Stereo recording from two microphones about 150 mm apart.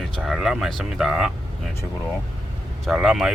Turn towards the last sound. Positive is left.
turn(degrees=-5)  # may be behind; listen again after turning